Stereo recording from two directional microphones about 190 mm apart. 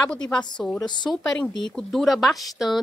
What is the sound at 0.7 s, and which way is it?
Speech, 25° left (ahead or behind).